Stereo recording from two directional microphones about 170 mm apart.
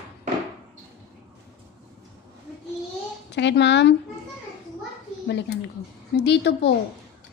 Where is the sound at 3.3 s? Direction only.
90° left.